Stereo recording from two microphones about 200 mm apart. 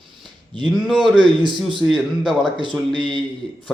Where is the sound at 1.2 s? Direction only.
25° right (ahead or behind).